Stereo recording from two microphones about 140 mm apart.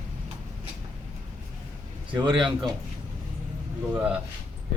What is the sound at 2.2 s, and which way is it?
Speech, 35° right (ahead or behind).